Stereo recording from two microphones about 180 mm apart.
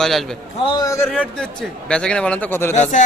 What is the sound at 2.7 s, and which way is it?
Speech, 40° left (ahead or behind).